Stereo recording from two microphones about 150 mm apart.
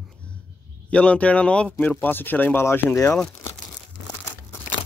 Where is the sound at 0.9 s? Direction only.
10° left (ahead or behind).